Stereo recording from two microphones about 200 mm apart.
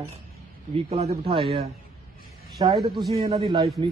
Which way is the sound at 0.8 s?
30° right (ahead or behind).